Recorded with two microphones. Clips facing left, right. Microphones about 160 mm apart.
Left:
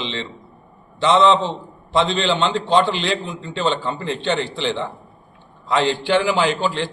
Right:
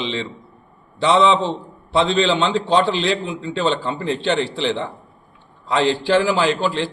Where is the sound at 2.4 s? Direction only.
5° right (ahead or behind).